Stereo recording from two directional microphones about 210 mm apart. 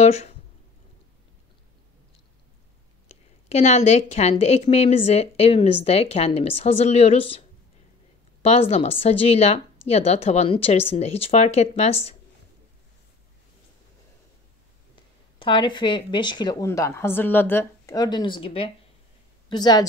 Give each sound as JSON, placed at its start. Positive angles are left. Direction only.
{"t": 0.0, "sound": "speech", "side_deg": 30}
{"t": 3.1, "sound": "a woman's voice", "side_deg": 30}
{"t": 15.3, "sound": "a woman's voice", "side_deg": 20}